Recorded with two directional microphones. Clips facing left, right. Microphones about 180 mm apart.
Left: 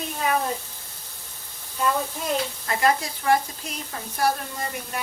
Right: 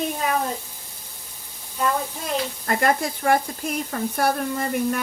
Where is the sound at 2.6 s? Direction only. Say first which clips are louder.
Right 2 dB; 50° right (ahead or behind).